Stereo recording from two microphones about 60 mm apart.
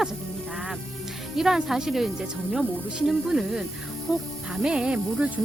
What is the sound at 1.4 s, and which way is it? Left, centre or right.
Speech, centre.